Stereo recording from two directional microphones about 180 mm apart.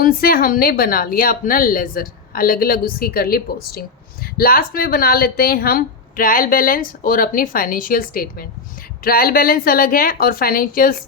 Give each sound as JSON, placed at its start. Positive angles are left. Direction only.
{"t": 0.0, "sound": "a woman's voice", "side_deg": 55}